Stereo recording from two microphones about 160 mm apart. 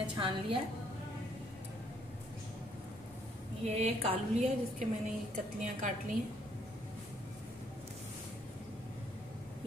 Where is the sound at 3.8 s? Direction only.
40° right (ahead or behind).